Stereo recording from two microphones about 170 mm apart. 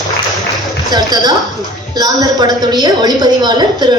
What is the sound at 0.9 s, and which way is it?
A woman's voice, 25° right (ahead or behind).